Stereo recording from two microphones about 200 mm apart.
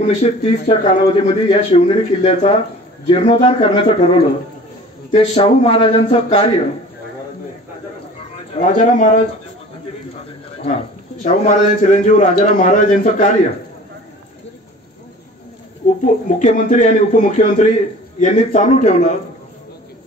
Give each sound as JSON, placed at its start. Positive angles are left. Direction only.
{"t": 0.0, "sound": "a man's voice", "side_deg": 35}
{"t": 8.2, "sound": "speech", "side_deg": 35}
{"t": 11.2, "sound": "a man's voice", "side_deg": 40}
{"t": 15.8, "sound": "a sound", "side_deg": 40}
{"t": 16.3, "sound": "a man's voice", "side_deg": 40}